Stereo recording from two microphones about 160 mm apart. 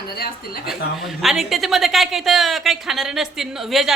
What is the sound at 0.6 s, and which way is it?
A woman's voice, centre (ahead or behind).